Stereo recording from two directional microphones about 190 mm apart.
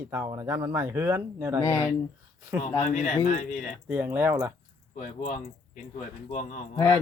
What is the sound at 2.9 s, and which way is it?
Speech, 40° left (ahead or behind).